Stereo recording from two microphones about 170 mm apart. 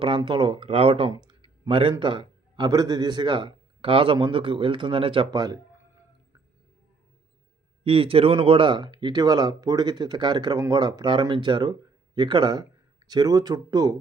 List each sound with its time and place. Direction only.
0.0 s speech: 30° right (ahead or behind)
7.9 s speech: 30° right (ahead or behind)